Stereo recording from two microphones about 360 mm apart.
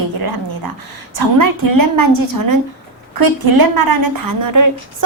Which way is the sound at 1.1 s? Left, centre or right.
Right.